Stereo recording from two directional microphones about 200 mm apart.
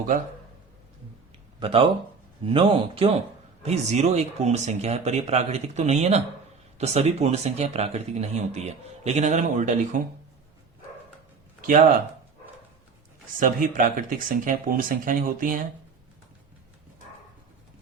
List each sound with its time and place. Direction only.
1.5 s a man's voice: 25° right (ahead or behind)
11.6 s speech: 40° right (ahead or behind)
13.4 s speech: 40° right (ahead or behind)